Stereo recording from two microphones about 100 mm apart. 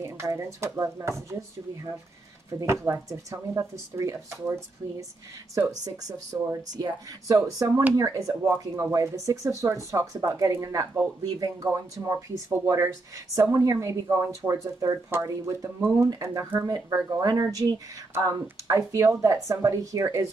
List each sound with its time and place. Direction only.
0.0 s speech: 30° right (ahead or behind)
2.6 s speech: 30° right (ahead or behind)